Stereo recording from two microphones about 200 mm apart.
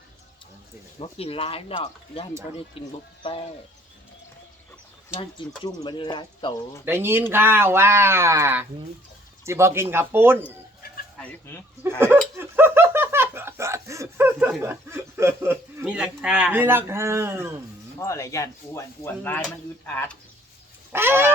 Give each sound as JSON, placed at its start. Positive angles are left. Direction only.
{"t": 0.9, "sound": "speech", "side_deg": 30}
{"t": 5.6, "sound": "speech", "side_deg": 20}
{"t": 6.8, "sound": "speech", "side_deg": -10}
{"t": 11.2, "sound": "speech", "side_deg": 10}
{"t": 11.9, "sound": "speech", "side_deg": -10}
{"t": 18.0, "sound": "speech", "side_deg": 15}
{"t": 20.9, "sound": "speech", "side_deg": -10}